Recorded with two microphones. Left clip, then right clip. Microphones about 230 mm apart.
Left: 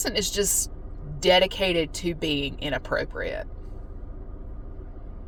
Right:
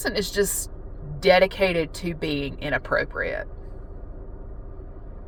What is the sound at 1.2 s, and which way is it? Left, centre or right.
A woman's voice, right.